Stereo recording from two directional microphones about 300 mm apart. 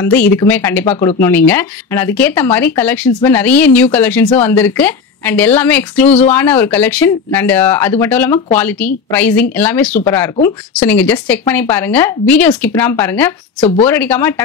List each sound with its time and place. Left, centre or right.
0.0 s speech: centre
13.6 s speech: left
13.8 s speech: centre